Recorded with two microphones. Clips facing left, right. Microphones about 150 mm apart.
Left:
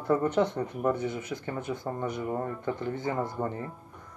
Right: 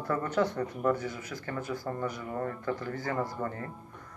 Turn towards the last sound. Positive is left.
turn(degrees=20)  # may be behind; listen again after turning